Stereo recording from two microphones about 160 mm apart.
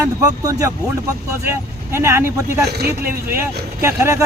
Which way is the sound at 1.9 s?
15° right (ahead or behind).